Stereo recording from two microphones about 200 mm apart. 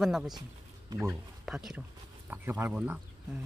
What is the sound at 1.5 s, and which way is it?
Speech, centre (ahead or behind).